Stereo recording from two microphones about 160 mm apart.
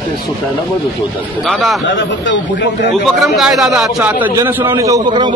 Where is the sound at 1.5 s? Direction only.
Centre (ahead or behind).